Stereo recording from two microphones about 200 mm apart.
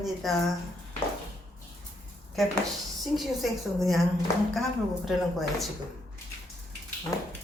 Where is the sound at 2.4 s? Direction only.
Centre (ahead or behind).